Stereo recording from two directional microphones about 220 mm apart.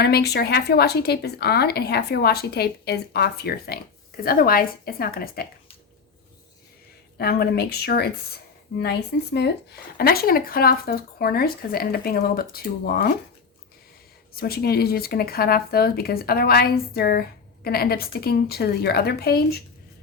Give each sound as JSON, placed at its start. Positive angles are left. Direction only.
{"t": 0.0, "sound": "speech", "side_deg": 45}
{"t": 7.2, "sound": "speech", "side_deg": 45}
{"t": 14.3, "sound": "speech", "side_deg": 45}